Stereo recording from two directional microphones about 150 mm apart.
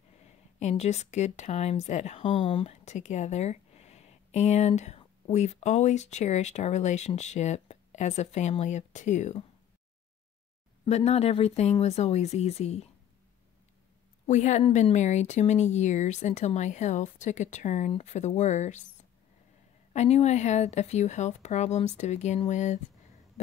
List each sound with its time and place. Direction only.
0.6 s speech: 45° left (ahead or behind)
10.9 s speech: 45° left (ahead or behind)
14.2 s speech: 50° left (ahead or behind)
19.9 s speech: 45° left (ahead or behind)